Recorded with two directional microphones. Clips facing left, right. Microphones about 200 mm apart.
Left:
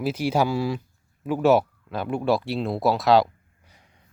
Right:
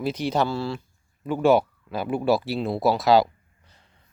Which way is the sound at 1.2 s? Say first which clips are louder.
Even; 5° left (ahead or behind).